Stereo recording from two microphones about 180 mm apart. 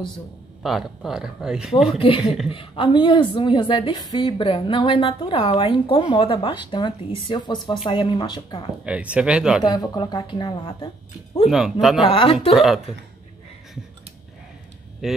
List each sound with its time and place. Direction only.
0.6 s speech: centre (ahead or behind)
1.9 s a woman's voice: 30° left (ahead or behind)
8.8 s speech: 5° right (ahead or behind)
9.6 s a woman's voice: 20° left (ahead or behind)
11.4 s speech: centre (ahead or behind)
12.0 s a woman's voice: 30° left (ahead or behind)
12.5 s speech: centre (ahead or behind)
15.0 s speech: centre (ahead or behind)